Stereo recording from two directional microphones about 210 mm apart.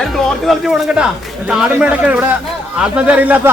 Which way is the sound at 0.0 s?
Centre (ahead or behind).